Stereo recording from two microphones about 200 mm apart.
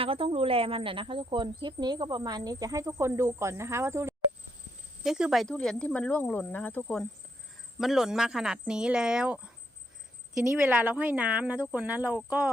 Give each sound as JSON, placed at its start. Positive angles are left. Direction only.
{"t": 0.0, "sound": "speech", "side_deg": -25}
{"t": 5.0, "sound": "speech", "side_deg": -5}
{"t": 10.5, "sound": "speech", "side_deg": -10}